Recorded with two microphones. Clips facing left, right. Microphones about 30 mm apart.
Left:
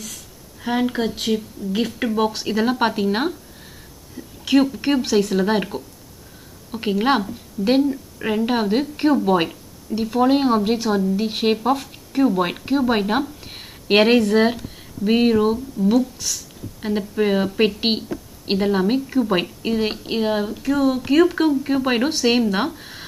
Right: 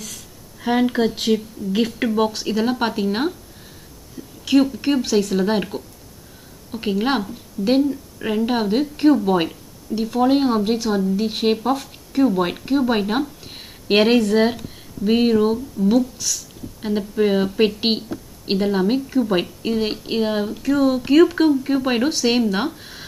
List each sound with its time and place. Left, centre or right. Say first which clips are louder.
0.7 s a woman's voice: right 2 dB; centre
4.2 s a sound: even; left
4.7 s a woman's voice: even; centre
16.0 s a woman's voice: even; centre